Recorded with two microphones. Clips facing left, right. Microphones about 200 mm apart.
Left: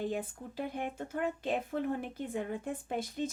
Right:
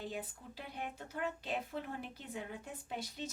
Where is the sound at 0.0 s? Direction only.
50° left (ahead or behind).